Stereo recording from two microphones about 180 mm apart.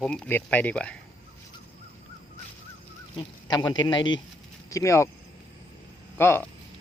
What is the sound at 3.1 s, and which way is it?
Speech, 25° left (ahead or behind).